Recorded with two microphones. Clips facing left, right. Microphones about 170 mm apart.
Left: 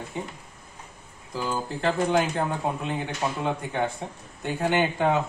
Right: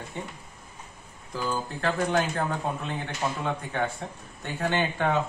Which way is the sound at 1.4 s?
15° left (ahead or behind).